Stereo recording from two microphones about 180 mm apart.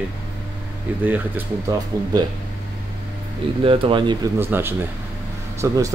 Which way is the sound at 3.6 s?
30° right (ahead or behind).